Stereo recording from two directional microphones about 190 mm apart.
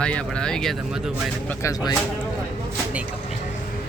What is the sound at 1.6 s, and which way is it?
Speech, 15° left (ahead or behind).